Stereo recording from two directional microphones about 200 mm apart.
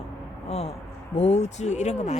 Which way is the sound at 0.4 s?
30° left (ahead or behind).